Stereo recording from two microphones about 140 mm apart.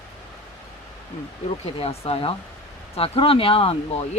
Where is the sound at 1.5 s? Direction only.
45° left (ahead or behind).